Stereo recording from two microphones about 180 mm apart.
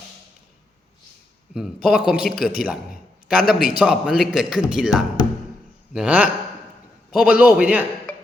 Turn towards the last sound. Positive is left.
turn(degrees=-5)  # may be behind; listen again after turning